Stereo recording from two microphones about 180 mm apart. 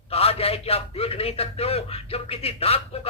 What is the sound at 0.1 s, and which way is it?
A man's voice, 35° left (ahead or behind).